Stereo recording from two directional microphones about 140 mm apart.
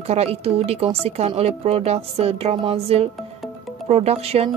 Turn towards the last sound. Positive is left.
turn(degrees=-45)  # may be behind; listen again after turning